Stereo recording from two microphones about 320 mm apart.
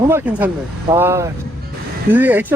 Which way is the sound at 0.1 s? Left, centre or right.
Centre.